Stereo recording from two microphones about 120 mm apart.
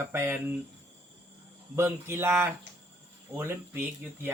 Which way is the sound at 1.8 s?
20° right (ahead or behind).